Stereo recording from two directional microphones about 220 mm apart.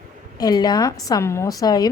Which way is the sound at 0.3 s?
20° left (ahead or behind).